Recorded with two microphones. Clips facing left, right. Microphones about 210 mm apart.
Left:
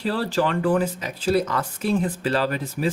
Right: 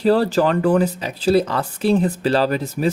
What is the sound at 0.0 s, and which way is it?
Speech, 40° right (ahead or behind).